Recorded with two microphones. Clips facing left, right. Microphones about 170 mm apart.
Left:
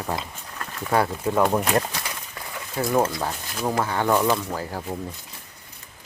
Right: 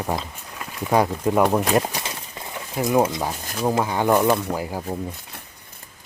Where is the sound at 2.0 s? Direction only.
20° right (ahead or behind).